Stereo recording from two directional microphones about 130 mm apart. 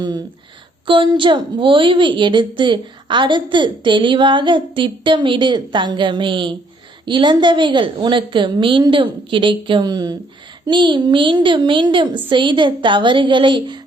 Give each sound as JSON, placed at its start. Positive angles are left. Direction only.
{"t": 0.0, "sound": "a woman's voice", "side_deg": -30}